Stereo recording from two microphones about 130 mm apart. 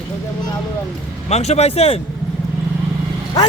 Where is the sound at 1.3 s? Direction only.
55° left (ahead or behind).